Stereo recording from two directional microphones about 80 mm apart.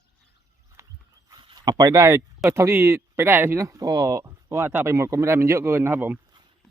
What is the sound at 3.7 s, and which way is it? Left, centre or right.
Speech, right.